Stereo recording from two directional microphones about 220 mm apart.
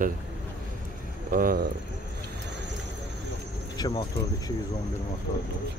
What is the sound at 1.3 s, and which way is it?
Speech, 40° right (ahead or behind).